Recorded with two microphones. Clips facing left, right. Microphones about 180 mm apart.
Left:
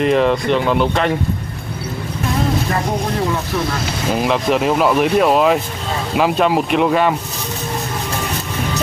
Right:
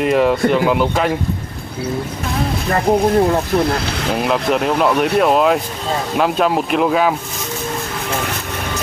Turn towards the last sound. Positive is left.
turn(degrees=0)  # may be behind; listen again after turning